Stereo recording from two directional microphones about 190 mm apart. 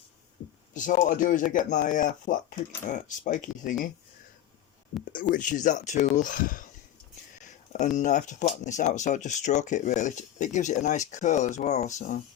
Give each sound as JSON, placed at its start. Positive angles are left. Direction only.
{"t": 0.7, "sound": "speech", "side_deg": 40}
{"t": 5.3, "sound": "speech", "side_deg": 40}
{"t": 7.7, "sound": "speech", "side_deg": 40}